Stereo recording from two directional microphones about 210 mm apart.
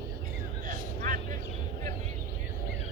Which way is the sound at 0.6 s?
40° right (ahead or behind).